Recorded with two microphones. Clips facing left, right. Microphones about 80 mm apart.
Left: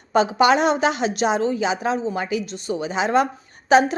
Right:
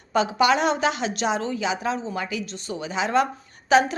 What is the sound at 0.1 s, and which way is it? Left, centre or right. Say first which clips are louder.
Speech: left 4 dB; left.